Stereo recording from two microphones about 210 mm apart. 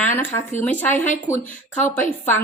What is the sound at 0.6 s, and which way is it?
Speech, 10° left (ahead or behind).